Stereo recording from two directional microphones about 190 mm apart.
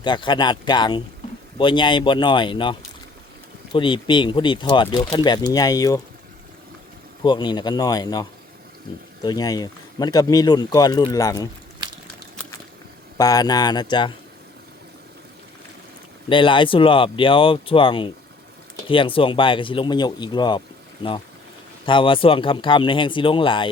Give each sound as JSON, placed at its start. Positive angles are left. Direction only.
{"t": 0.0, "sound": "speech", "side_deg": 25}
{"t": 7.3, "sound": "speech", "side_deg": 20}
{"t": 13.1, "sound": "speech", "side_deg": 20}
{"t": 16.3, "sound": "speech", "side_deg": 25}
{"t": 21.8, "sound": "speech", "side_deg": 25}